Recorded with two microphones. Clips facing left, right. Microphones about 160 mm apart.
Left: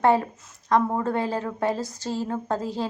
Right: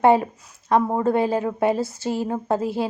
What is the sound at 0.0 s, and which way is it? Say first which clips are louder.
A woman's voice: right 4 dB; 15° right (ahead or behind).